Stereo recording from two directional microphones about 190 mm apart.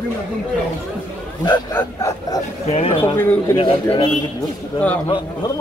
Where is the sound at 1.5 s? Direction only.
15° left (ahead or behind).